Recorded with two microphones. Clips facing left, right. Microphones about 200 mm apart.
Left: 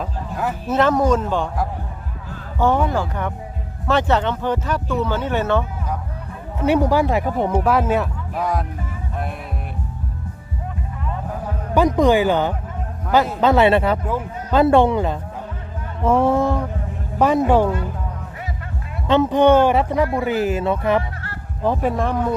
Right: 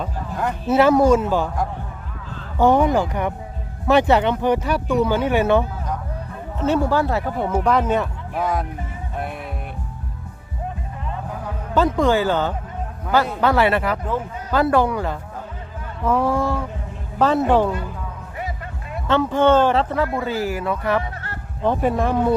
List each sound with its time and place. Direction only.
0.0 s a sound: 5° left (ahead or behind)
0.7 s speech: 10° right (ahead or behind)
2.6 s speech: 15° right (ahead or behind)
6.6 s speech: 15° left (ahead or behind)
7.6 s speech: 5° left (ahead or behind)
11.7 s speech: 15° left (ahead or behind)
19.0 s speech: 20° left (ahead or behind)
21.6 s speech: centre (ahead or behind)